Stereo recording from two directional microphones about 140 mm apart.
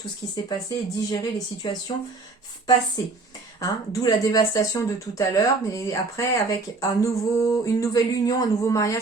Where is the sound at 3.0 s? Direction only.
25° left (ahead or behind).